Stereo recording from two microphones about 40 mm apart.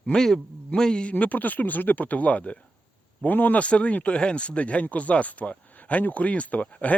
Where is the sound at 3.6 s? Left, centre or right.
Left.